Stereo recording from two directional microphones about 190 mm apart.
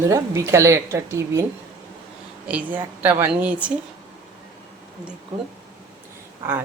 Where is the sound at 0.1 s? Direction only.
15° right (ahead or behind).